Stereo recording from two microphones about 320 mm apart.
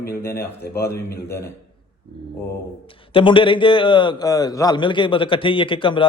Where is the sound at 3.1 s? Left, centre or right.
Centre.